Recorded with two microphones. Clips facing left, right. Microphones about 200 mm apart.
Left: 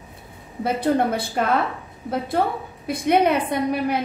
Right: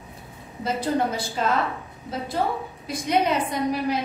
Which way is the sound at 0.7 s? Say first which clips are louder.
Left 4 dB; 60° left (ahead or behind).